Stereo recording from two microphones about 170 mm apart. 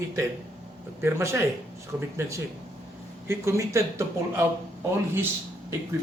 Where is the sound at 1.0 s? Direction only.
15° right (ahead or behind).